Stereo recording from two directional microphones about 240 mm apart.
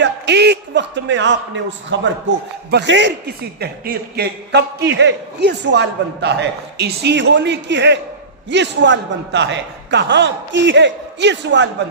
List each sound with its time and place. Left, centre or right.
0.0 s a man's voice: right